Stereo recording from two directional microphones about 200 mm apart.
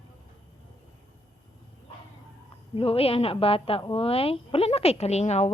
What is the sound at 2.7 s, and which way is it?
A woman's voice, 30° left (ahead or behind).